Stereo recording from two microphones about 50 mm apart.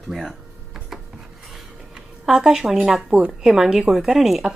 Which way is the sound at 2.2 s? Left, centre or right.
Centre.